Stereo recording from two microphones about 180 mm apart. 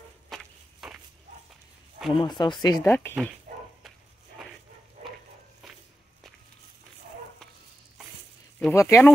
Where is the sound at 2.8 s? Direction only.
10° left (ahead or behind).